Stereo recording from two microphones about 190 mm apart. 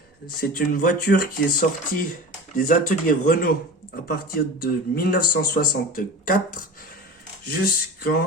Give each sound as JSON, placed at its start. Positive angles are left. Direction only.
{"t": 0.3, "sound": "speech", "side_deg": 50}